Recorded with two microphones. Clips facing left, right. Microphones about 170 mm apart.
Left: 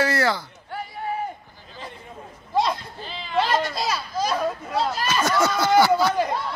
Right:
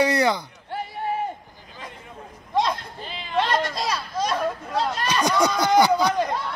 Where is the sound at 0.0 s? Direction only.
20° right (ahead or behind).